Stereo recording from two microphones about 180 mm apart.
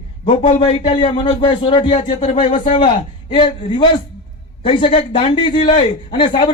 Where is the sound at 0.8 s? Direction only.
30° left (ahead or behind).